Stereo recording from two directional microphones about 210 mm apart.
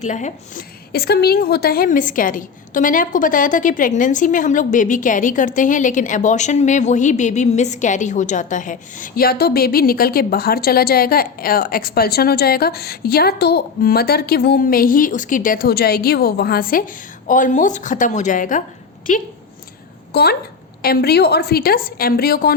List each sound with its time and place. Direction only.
0.0 s a woman's voice: 35° left (ahead or behind)
20.1 s a woman's voice: 50° left (ahead or behind)